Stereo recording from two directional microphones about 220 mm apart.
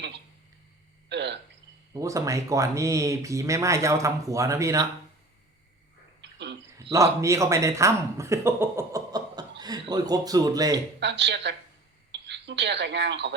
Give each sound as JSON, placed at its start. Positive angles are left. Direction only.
{"t": 1.1, "sound": "a woman's voice", "side_deg": -50}
{"t": 1.9, "sound": "speech", "side_deg": -15}
{"t": 6.9, "sound": "speech", "side_deg": -15}
{"t": 11.0, "sound": "a woman's voice", "side_deg": -50}